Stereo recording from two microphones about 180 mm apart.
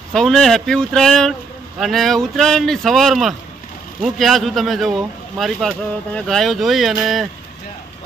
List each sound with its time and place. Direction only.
0.1 s speech: centre (ahead or behind)